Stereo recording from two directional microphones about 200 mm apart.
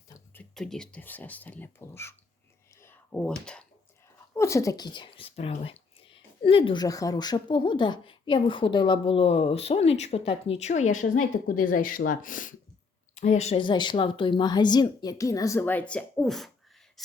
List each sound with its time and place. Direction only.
0.5 s speech: centre (ahead or behind)
2.8 s a sound: 10° left (ahead or behind)
4.4 s a woman's voice: 15° left (ahead or behind)